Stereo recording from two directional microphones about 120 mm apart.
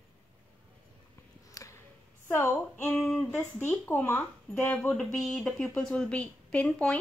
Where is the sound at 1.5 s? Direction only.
25° left (ahead or behind).